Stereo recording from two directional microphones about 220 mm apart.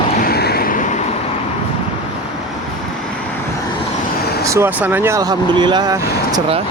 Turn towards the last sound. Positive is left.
turn(degrees=-15)  # may be behind; listen again after turning